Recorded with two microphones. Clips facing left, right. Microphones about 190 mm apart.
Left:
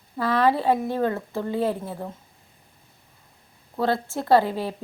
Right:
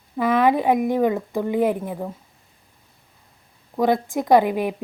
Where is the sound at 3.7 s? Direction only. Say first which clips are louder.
Right 4 dB; 15° right (ahead or behind).